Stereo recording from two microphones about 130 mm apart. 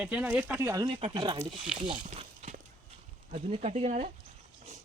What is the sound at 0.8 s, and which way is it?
Speech, 45° right (ahead or behind).